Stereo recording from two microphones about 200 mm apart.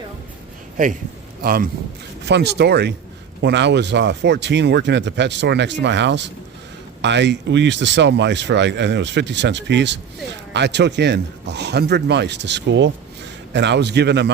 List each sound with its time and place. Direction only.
1.4 s a man's voice: 45° right (ahead or behind)